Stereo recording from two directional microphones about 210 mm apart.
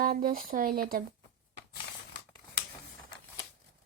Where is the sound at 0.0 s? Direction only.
45° right (ahead or behind).